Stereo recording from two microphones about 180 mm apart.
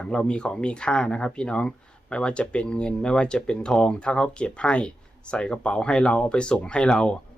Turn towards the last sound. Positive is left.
turn(degrees=5)  # may be behind; listen again after turning